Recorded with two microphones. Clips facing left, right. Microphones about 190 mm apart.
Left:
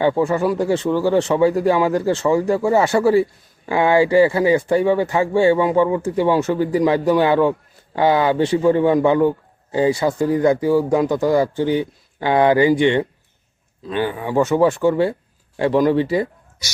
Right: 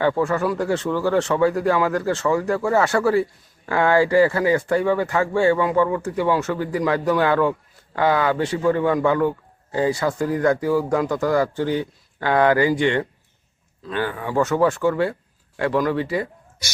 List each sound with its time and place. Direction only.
0.0 s speech: 20° left (ahead or behind)
3.0 s speech: 25° left (ahead or behind)